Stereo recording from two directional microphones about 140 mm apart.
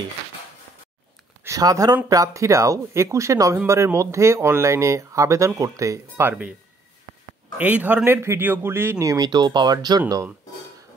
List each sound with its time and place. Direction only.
1.4 s speech: 25° right (ahead or behind)
7.5 s speech: 10° right (ahead or behind); by 10.2 s 30° right (ahead or behind)